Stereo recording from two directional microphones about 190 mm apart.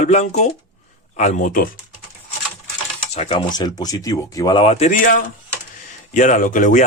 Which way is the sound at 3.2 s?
30° left (ahead or behind).